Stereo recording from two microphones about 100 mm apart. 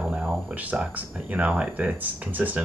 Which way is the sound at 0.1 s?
10° right (ahead or behind).